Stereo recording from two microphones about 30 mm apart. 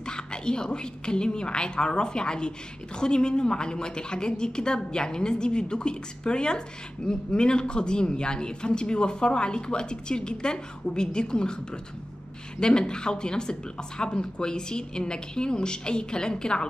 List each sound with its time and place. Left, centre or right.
0.0 s a woman's voice: left